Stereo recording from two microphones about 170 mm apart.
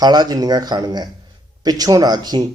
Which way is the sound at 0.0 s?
25° right (ahead or behind).